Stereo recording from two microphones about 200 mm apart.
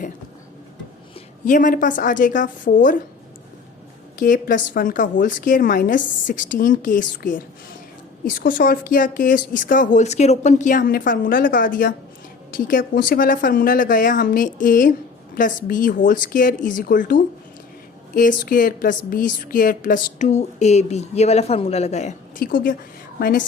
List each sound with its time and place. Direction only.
1.5 s a woman's voice: 40° left (ahead or behind)
4.2 s a woman's voice: 40° left (ahead or behind)